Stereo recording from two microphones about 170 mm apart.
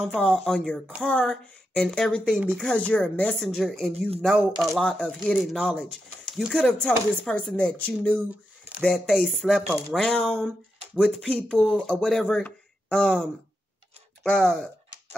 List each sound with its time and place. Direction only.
0.0 s speech: centre (ahead or behind)